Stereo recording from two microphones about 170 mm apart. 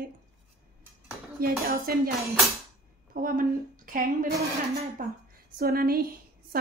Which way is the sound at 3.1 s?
55° right (ahead or behind).